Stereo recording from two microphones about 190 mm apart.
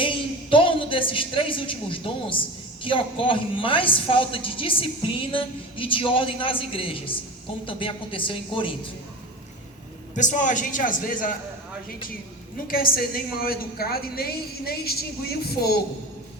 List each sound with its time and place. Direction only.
0.0 s a woman's voice: 25° left (ahead or behind)
10.2 s a woman's voice: 40° left (ahead or behind)
12.6 s a woman's voice: 50° left (ahead or behind)